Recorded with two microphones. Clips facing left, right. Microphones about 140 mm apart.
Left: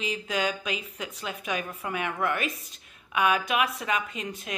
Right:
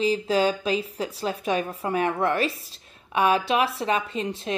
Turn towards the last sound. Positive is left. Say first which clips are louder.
# right 7 dB
turn(degrees=-30)  # may be behind; listen again after turning